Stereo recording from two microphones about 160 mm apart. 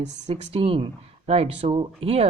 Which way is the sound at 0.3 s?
35° right (ahead or behind).